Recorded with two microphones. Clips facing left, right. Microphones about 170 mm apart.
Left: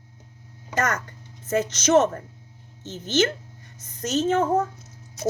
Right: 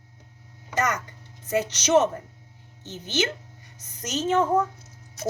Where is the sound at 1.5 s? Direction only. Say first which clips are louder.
Left 2 dB; 10° right (ahead or behind).